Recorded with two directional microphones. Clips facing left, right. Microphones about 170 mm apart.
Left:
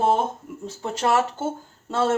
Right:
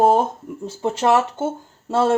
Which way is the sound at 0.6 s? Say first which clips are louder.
Right 5 dB; 30° right (ahead or behind).